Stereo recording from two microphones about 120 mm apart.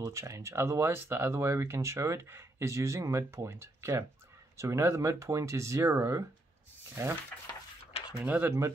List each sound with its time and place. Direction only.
0.0 s speech: 25° right (ahead or behind)
8.1 s speech: 10° right (ahead or behind)